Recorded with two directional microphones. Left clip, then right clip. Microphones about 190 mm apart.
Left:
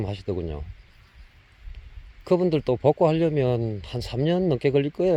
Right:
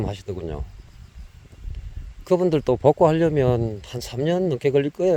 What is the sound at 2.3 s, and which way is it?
Speech, 15° right (ahead or behind).